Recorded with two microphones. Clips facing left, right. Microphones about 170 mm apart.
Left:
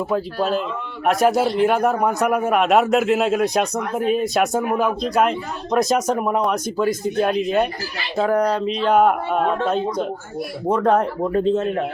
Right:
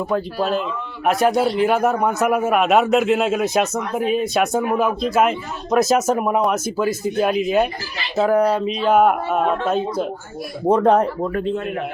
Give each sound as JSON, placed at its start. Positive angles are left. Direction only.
{"t": 0.1, "sound": "a man's voice", "side_deg": 0}
{"t": 10.7, "sound": "speech", "side_deg": -30}
{"t": 11.2, "sound": "speech", "side_deg": 25}